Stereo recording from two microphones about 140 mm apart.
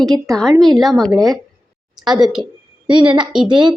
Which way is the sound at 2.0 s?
30° right (ahead or behind).